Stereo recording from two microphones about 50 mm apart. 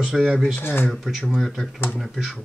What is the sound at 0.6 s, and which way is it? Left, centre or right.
Speech, left.